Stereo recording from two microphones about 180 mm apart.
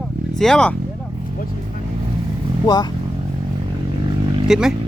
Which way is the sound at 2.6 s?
20° left (ahead or behind).